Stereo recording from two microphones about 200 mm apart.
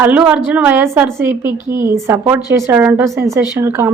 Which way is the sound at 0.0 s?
5° right (ahead or behind).